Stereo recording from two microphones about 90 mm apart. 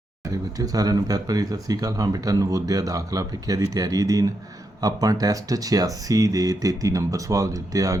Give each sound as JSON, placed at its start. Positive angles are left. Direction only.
{"t": 0.3, "sound": "speech", "side_deg": -40}